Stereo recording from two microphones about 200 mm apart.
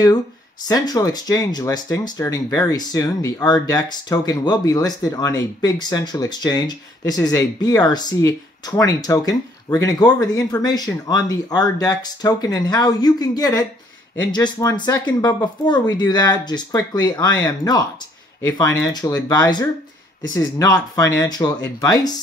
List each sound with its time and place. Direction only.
0.7 s speech: 20° left (ahead or behind)
18.9 s speech: 20° left (ahead or behind)